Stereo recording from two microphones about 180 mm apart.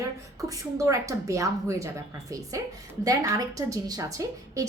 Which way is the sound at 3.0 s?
20° right (ahead or behind).